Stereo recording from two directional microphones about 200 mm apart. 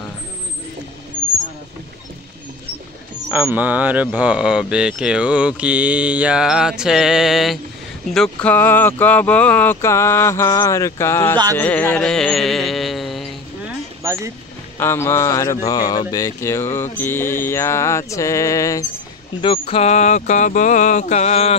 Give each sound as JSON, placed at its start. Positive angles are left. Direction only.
{"t": 3.3, "sound": "speech", "side_deg": -10}
{"t": 11.5, "sound": "carnatic music", "side_deg": 5}
{"t": 14.0, "sound": "speech", "side_deg": -15}
{"t": 14.8, "sound": "speech", "side_deg": 10}
{"t": 19.4, "sound": "a sound", "side_deg": 25}